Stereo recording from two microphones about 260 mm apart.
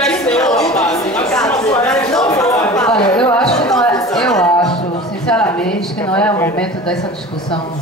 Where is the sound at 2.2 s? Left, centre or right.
Centre.